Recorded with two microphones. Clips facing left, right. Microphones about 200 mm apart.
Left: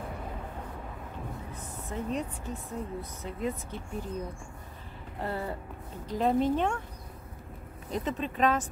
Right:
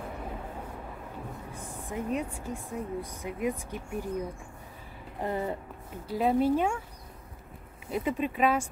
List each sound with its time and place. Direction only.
1.5 s speech: 10° right (ahead or behind)
5.2 s speech: 20° right (ahead or behind)
6.0 s speech: 10° right (ahead or behind)
7.9 s speech: 10° right (ahead or behind)